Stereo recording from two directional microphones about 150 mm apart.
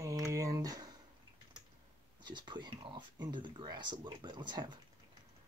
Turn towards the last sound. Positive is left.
turn(degrees=-30)  # may be behind; listen again after turning